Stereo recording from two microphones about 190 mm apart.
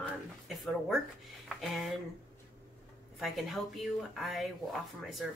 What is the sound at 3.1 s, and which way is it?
A woman's voice, centre (ahead or behind).